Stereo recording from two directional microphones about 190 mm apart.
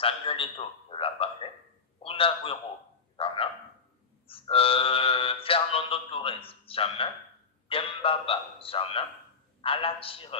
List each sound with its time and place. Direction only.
0.0 s a man's voice: 30° left (ahead or behind)
3.2 s frog: 30° left (ahead or behind)
4.3 s music: 30° left (ahead or behind)
7.6 s a man's voice: 30° left (ahead or behind)